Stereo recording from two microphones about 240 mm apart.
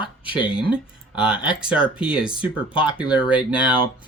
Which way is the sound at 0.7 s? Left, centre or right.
Centre.